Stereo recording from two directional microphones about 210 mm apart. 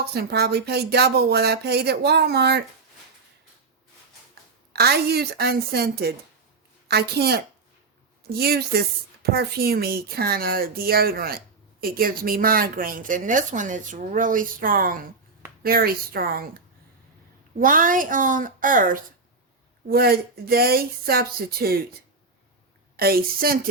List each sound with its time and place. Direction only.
0.0 s speech: 50° right (ahead or behind)
4.7 s a woman's voice: 50° right (ahead or behind)
23.0 s speech: 45° right (ahead or behind)